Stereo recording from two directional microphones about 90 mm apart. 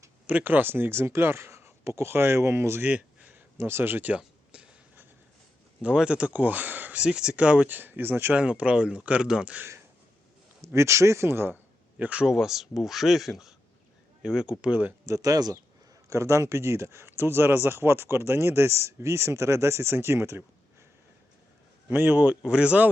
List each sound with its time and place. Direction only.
0.3 s speech: 20° right (ahead or behind)
2.9 s a sound: 15° right (ahead or behind)
3.6 s speech: 25° right (ahead or behind)
4.2 s a sound: 10° right (ahead or behind)
5.8 s speech: 10° right (ahead or behind)
10.6 s speech: 30° right (ahead or behind)
11.9 s speech: 15° right (ahead or behind)
15.0 s speech: 40° right (ahead or behind)
16.0 s speech: 35° right (ahead or behind)
21.8 s speech: 20° right (ahead or behind)